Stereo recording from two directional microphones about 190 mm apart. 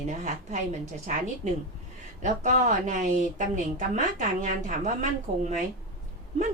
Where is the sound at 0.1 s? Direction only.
40° right (ahead or behind).